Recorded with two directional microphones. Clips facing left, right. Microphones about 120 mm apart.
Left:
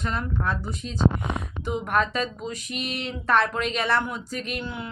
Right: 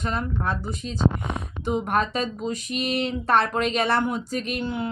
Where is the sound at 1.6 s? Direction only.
35° right (ahead or behind).